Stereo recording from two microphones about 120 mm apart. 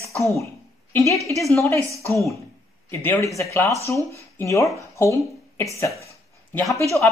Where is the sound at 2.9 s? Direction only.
20° left (ahead or behind).